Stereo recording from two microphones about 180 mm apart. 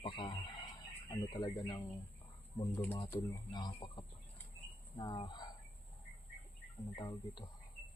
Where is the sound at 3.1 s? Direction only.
25° left (ahead or behind).